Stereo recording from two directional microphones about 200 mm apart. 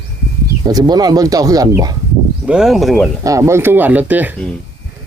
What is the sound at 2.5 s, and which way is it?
Speech, centre (ahead or behind).